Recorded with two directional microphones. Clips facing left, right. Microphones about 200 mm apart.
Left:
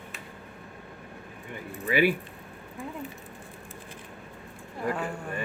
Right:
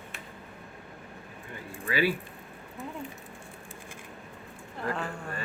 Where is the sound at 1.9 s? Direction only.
15° left (ahead or behind).